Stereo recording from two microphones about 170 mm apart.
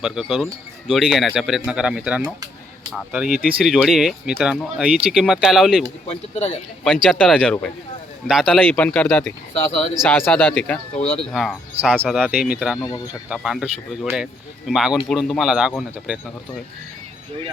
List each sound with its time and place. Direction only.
0.0 s speech: 5° right (ahead or behind)
6.1 s speech: 35° left (ahead or behind)
6.8 s speech: 5° left (ahead or behind)
10.9 s speech: 40° left (ahead or behind)
11.3 s speech: centre (ahead or behind)
11.8 s speech: 10° right (ahead or behind)